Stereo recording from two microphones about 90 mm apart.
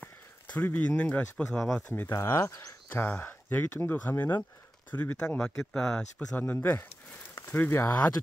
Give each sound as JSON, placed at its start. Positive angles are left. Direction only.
{"t": 0.0, "sound": "speech", "side_deg": 20}
{"t": 2.9, "sound": "speech", "side_deg": 20}
{"t": 5.7, "sound": "speech", "side_deg": 5}
{"t": 7.3, "sound": "a sound", "side_deg": 25}